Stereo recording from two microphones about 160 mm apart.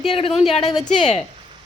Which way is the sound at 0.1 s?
35° left (ahead or behind).